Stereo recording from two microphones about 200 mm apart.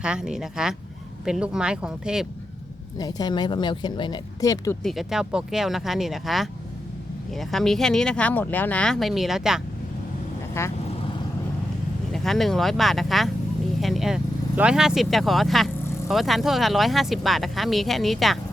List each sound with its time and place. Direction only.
0.0 s speech: 5° right (ahead or behind)
3.0 s speech: 20° left (ahead or behind)
4.8 s speech: centre (ahead or behind)
10.6 s vehicle: 10° left (ahead or behind)
12.1 s speech: centre (ahead or behind)